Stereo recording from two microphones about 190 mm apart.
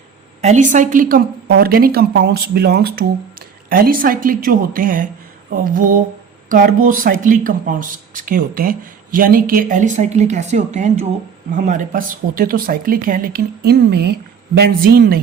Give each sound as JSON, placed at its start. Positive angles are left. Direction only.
{"t": 0.4, "sound": "speech", "side_deg": -40}